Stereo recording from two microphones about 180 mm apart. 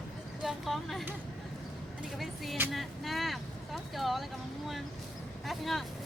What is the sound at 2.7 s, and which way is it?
Vehicle, centre (ahead or behind).